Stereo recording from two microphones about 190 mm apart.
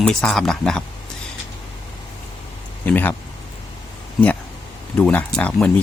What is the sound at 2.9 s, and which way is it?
Speech, 10° left (ahead or behind).